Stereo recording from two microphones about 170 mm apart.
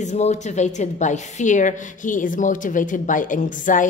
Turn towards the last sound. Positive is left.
turn(degrees=50)  # may be behind; listen again after turning